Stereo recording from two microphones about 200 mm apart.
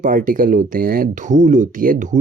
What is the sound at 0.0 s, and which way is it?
Speech, 40° right (ahead or behind).